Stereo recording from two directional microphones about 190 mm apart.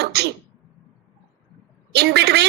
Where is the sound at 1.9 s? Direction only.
60° right (ahead or behind).